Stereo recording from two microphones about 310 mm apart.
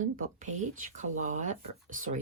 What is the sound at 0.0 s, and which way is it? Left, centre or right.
Speech, right.